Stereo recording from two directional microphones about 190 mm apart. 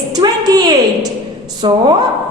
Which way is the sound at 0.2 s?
20° right (ahead or behind).